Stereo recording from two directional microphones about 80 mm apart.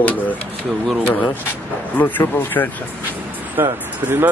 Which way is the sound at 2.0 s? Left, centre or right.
Left.